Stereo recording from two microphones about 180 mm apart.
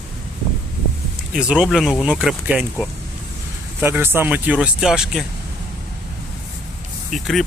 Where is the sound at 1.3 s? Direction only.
5° right (ahead or behind).